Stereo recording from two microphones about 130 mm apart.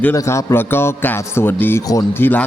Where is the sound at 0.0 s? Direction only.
20° left (ahead or behind).